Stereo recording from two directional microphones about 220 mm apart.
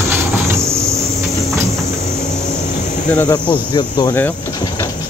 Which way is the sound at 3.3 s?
20° left (ahead or behind).